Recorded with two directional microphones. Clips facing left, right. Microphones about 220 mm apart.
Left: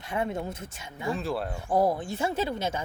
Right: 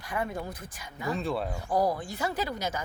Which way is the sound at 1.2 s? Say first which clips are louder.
Even; centre (ahead or behind).